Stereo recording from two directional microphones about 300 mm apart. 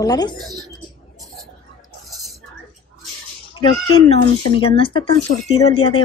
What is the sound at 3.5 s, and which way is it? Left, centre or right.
A woman's voice, centre.